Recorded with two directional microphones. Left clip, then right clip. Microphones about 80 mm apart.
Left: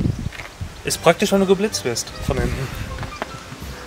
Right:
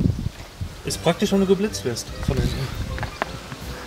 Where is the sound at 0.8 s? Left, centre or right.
Left.